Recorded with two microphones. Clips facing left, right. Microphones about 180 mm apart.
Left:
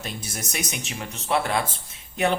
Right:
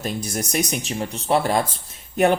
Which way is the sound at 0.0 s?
40° right (ahead or behind).